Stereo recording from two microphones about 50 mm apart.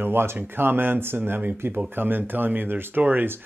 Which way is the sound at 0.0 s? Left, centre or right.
Right.